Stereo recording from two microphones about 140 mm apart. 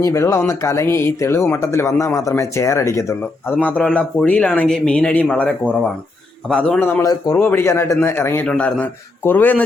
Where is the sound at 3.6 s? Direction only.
10° left (ahead or behind).